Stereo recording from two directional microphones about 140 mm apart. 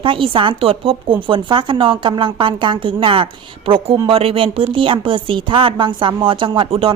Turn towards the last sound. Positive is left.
turn(degrees=-40)  # may be behind; listen again after turning